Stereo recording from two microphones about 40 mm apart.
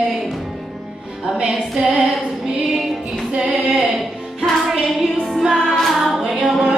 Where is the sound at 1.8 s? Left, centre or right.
Centre.